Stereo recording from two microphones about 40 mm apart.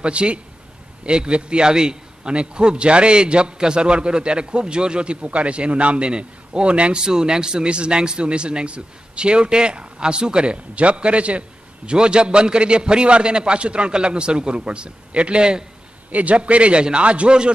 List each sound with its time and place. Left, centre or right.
0.0 s speech: right
7.0 s speech: centre
16.1 s a man's voice: right